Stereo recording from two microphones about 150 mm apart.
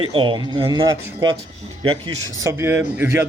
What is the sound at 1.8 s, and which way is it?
Speech, 35° right (ahead or behind).